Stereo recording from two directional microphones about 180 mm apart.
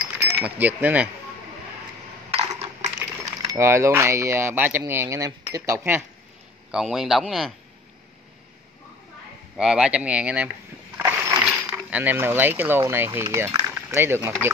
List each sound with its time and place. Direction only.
0.0 s speech: 10° right (ahead or behind)
2.3 s coin: 35° right (ahead or behind)
3.5 s speech: 15° right (ahead or behind)
6.7 s speech: centre (ahead or behind)
9.6 s speech: 5° right (ahead or behind)